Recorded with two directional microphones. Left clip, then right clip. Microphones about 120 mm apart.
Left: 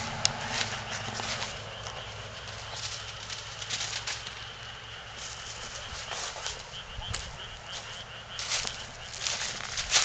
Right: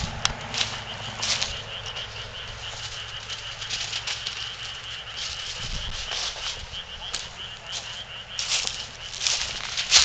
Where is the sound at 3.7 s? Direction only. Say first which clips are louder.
Right 4 dB; 10° left (ahead or behind).